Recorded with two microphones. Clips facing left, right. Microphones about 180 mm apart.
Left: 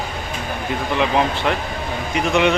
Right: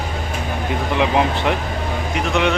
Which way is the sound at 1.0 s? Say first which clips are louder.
Right 1 dB; 15° right (ahead or behind).